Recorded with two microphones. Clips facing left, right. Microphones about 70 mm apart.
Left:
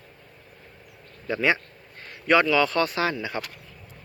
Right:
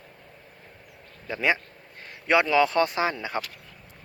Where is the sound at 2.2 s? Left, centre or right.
Centre.